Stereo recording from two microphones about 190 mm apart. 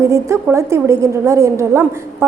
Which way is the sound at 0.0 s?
15° right (ahead or behind).